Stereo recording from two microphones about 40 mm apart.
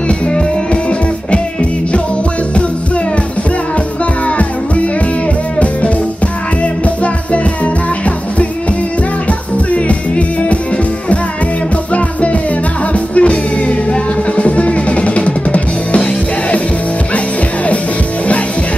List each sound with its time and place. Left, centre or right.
6.6 s music: left
9.7 s music: left
11.9 s music: left
14.3 s drum kit: left